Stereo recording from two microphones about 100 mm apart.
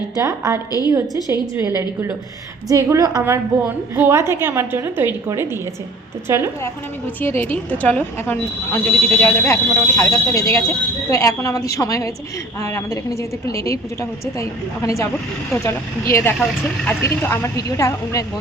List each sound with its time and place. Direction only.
0.2 s a woman's voice: 35° right (ahead or behind)
1.3 s a woman's voice: 25° right (ahead or behind); by 3.2 s 40° right (ahead or behind)
3.2 s a woman's voice: 20° right (ahead or behind)
7.2 s a woman's voice: 20° left (ahead or behind)